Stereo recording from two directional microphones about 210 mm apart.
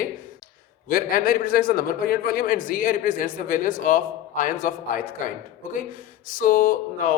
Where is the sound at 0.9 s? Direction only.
45° left (ahead or behind).